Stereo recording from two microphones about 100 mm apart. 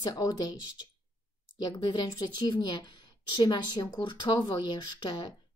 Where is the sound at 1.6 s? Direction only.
45° left (ahead or behind).